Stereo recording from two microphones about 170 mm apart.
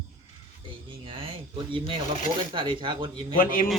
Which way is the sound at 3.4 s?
55° left (ahead or behind).